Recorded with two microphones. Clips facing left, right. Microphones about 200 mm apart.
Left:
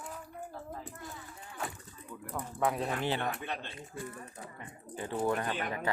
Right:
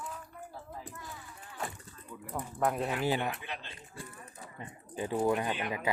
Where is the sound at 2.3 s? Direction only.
5° right (ahead or behind).